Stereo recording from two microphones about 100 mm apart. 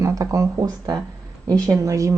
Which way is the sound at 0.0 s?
35° right (ahead or behind).